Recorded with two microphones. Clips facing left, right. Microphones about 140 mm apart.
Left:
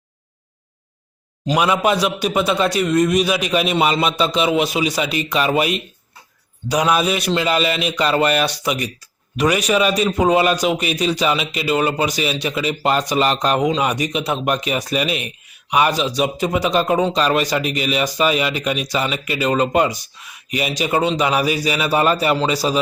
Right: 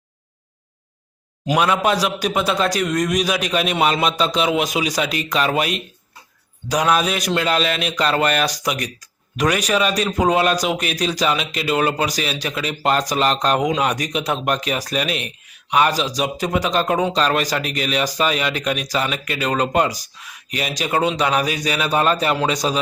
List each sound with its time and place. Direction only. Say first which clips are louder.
1.5 s a man's voice: left 1 dB; 5° left (ahead or behind)
15.9 s speech: left 2 dB; 35° right (ahead or behind)
16.1 s a man's voice: left 2 dB; centre (ahead or behind)